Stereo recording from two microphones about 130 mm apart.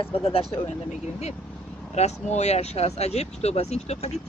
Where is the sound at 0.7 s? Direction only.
60° left (ahead or behind).